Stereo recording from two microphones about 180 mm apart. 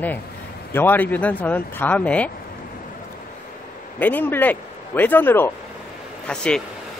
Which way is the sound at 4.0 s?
10° left (ahead or behind).